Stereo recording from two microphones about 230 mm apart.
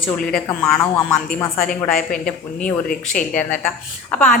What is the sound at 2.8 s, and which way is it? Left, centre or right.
Speech, left.